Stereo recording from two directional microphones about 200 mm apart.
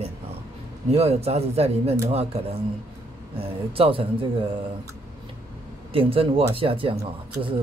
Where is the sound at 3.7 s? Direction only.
25° right (ahead or behind).